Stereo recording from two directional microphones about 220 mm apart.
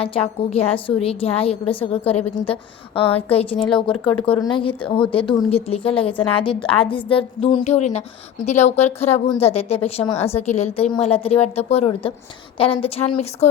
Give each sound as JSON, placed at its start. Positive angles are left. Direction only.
{"t": 0.0, "sound": "a woman's voice", "side_deg": 25}